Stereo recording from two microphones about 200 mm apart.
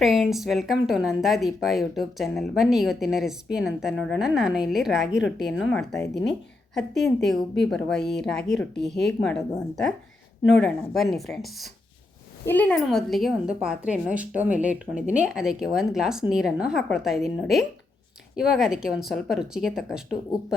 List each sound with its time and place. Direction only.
0.0 s a woman's voice: centre (ahead or behind)
6.7 s a woman's voice: centre (ahead or behind)